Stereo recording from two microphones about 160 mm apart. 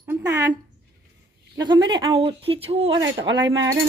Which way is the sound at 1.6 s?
30° right (ahead or behind).